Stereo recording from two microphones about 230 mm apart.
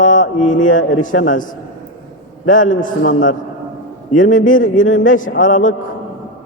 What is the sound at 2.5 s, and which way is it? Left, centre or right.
Speech, left.